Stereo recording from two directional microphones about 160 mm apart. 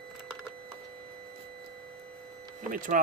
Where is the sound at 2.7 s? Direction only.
55° right (ahead or behind).